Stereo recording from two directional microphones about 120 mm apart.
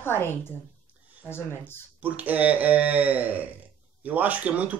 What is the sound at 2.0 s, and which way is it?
Speech, 15° right (ahead or behind).